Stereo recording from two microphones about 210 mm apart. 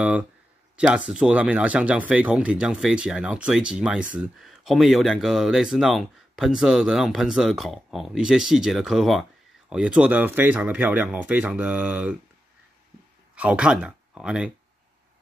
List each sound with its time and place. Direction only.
0.7 s speech: 5° right (ahead or behind)
13.3 s speech: 5° right (ahead or behind)